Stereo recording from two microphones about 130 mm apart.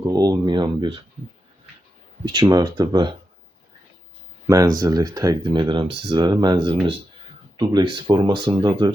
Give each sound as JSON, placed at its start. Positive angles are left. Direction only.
{"t": 0.1, "sound": "speech", "side_deg": -30}
{"t": 2.2, "sound": "speech", "side_deg": -35}
{"t": 4.4, "sound": "speech", "side_deg": -25}